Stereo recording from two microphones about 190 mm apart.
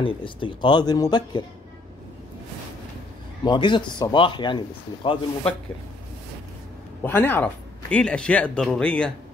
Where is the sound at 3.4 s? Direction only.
25° left (ahead or behind).